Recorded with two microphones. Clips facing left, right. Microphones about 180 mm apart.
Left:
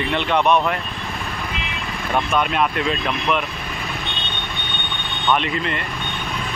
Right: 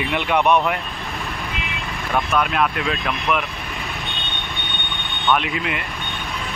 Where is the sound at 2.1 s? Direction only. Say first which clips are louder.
Even; centre (ahead or behind).